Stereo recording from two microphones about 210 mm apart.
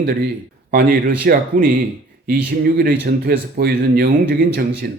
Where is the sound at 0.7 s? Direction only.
45° right (ahead or behind).